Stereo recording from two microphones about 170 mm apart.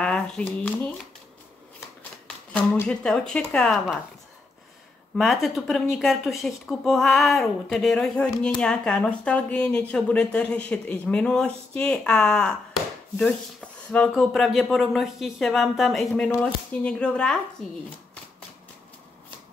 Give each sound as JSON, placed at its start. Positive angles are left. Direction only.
{"t": 0.0, "sound": "shuffling cards", "side_deg": 5}
{"t": 2.2, "sound": "speech", "side_deg": 5}
{"t": 5.1, "sound": "speech", "side_deg": 0}